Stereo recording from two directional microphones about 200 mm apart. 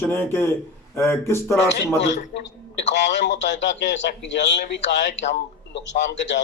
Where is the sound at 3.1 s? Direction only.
60° left (ahead or behind).